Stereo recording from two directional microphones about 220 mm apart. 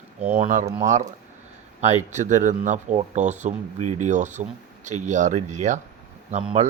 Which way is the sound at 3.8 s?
90° right.